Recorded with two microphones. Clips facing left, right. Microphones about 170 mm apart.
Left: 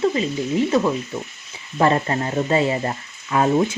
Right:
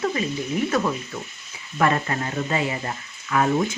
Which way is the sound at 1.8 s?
30° left (ahead or behind).